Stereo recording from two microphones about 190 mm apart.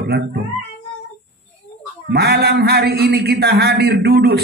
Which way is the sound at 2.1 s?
55° right (ahead or behind).